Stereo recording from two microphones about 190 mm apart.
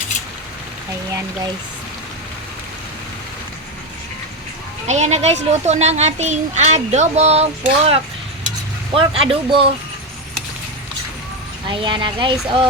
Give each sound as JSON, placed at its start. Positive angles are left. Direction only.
{"t": 4.9, "sound": "a child's voice", "side_deg": -35}
{"t": 9.0, "sound": "speech", "side_deg": -30}
{"t": 11.7, "sound": "speech", "side_deg": -25}